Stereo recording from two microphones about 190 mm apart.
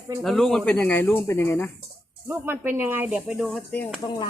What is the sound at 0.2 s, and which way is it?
Speech, centre (ahead or behind).